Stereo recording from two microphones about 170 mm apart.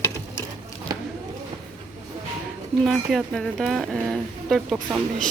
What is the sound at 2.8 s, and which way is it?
Speech, centre (ahead or behind).